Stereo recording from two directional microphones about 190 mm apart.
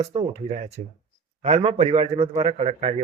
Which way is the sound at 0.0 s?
35° right (ahead or behind).